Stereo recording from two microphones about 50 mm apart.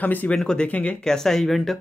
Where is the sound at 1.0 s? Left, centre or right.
Centre.